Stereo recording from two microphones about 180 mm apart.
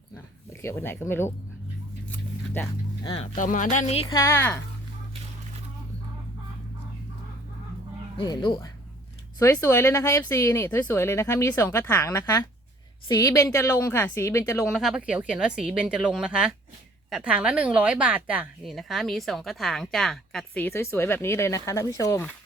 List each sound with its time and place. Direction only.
0.6 s speech: 15° left (ahead or behind)
2.0 s a sound: 10° left (ahead or behind)
3.0 s speech: 25° left (ahead or behind)
3.3 s speech: 45° left (ahead or behind)
4.1 s speech: 15° left (ahead or behind)
8.2 s speech: 25° left (ahead or behind)
9.4 s speech: 15° left (ahead or behind)
14.7 s a woman's voice: centre (ahead or behind); by 22.3 s 15° left (ahead or behind)